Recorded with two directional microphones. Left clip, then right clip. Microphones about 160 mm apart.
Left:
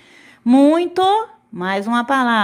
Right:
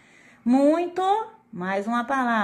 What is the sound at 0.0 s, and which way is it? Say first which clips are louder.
Speech: left 6 dB; 50° left (ahead or behind).